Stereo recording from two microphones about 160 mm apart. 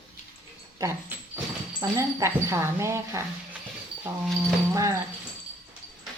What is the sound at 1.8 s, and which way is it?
Speech, 20° right (ahead or behind).